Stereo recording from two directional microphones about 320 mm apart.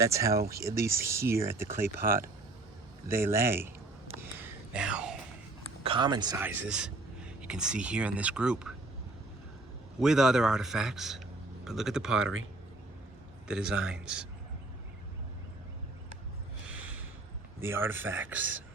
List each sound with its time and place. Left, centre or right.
0.0 s speech: centre
2.0 s speech: right
3.1 s speech: centre
4.4 s a sound: centre
5.8 s speech: centre
10.0 s speech: centre
13.5 s speech: centre
16.6 s a sound: centre
17.6 s speech: centre